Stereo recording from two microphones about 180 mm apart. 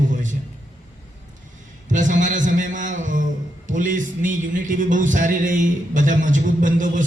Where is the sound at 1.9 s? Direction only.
45° right (ahead or behind).